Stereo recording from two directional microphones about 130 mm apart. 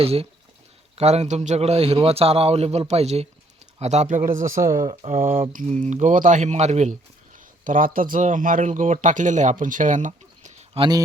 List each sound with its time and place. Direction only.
0.0 s a man's voice: 50° right (ahead or behind); by 4.6 s 90° right
5.0 s speech: 70° right (ahead or behind)
7.3 s speech: 90° right; by 10.5 s 70° right (ahead or behind)
10.8 s speech: 30° right (ahead or behind)